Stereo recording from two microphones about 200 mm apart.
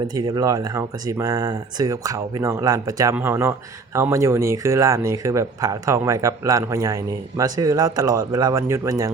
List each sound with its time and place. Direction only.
0.1 s speech: 20° right (ahead or behind)